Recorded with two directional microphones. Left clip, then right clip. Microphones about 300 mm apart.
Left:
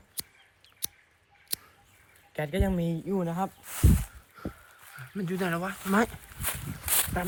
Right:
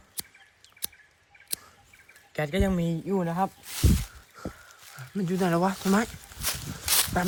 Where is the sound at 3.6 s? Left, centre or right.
Centre.